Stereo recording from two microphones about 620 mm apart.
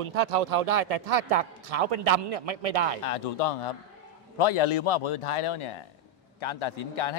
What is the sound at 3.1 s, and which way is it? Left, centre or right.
A man's voice, left.